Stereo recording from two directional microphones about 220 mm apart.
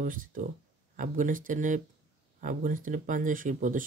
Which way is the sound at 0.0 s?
40° right (ahead or behind).